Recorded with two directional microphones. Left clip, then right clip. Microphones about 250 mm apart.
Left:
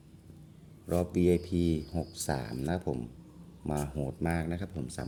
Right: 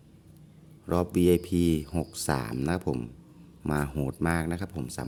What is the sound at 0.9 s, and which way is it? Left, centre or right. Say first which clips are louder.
Speech: right 4 dB; right.